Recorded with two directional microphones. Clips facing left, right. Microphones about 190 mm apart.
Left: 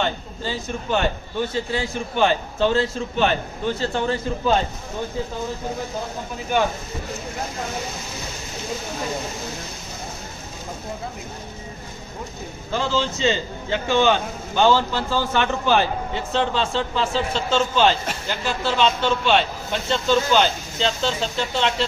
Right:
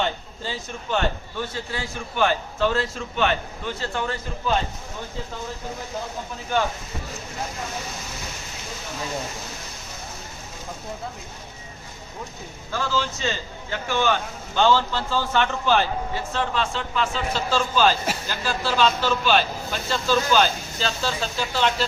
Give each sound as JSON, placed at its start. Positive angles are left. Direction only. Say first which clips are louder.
{"t": 0.9, "sound": "a man's voice", "louder": "left 2 dB", "side_deg": 20}
{"t": 12.7, "sound": "a man's voice", "louder": "left 3 dB", "side_deg": 25}